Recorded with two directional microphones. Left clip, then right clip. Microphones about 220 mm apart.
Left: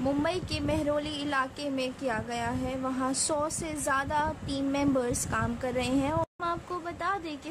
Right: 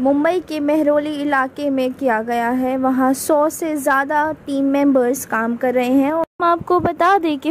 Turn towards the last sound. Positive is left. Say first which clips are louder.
# right 17 dB
turn(degrees=-40)  # may be behind; listen again after turning